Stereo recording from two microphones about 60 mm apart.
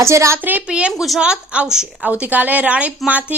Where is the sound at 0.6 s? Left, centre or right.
Centre.